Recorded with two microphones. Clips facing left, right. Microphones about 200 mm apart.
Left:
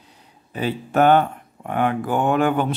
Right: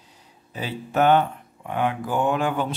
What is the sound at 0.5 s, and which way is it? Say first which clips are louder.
Speech: left 4 dB; 55° left (ahead or behind).